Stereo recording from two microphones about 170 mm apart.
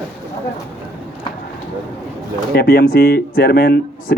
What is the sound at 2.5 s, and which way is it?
Speech, 65° left (ahead or behind).